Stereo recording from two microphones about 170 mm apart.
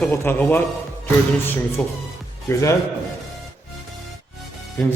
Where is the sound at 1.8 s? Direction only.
10° left (ahead or behind).